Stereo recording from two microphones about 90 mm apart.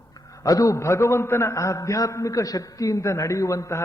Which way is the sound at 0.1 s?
40° left (ahead or behind).